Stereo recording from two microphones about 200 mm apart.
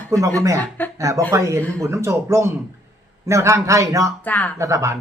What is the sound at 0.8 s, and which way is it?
Speech, 10° left (ahead or behind).